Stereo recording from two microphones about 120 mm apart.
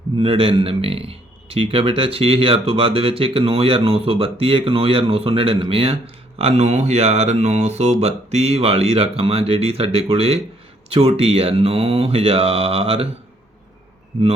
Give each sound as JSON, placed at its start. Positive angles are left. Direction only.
{"t": 0.2, "sound": "a man's voice", "side_deg": -50}
{"t": 6.4, "sound": "speech", "side_deg": -65}